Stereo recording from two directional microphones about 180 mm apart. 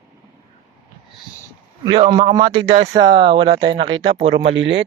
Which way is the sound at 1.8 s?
25° right (ahead or behind).